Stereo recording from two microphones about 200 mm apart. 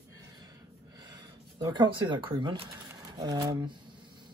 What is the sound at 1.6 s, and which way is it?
Speech, 20° right (ahead or behind).